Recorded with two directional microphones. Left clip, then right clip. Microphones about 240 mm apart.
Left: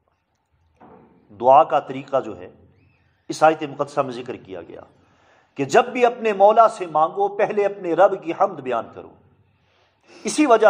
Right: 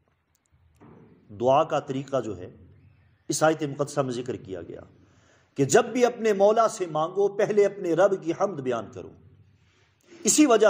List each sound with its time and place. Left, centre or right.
1.3 s a man's voice: right
10.2 s a man's voice: right